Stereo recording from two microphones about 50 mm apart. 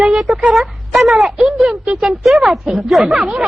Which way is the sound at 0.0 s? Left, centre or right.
Centre.